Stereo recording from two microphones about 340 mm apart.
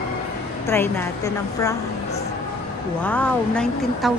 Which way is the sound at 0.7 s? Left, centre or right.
Centre.